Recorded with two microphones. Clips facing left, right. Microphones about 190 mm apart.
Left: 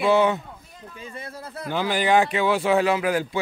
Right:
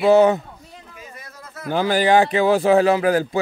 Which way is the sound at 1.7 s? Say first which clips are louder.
Right 4 dB; 40° right (ahead or behind).